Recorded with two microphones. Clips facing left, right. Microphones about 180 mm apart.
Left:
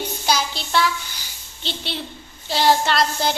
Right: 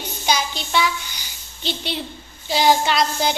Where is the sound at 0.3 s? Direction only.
Centre (ahead or behind).